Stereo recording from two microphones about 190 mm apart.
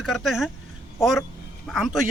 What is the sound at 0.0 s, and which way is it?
Speech, centre (ahead or behind).